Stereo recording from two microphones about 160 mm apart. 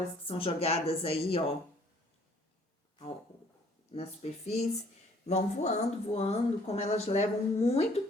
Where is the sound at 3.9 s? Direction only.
35° left (ahead or behind).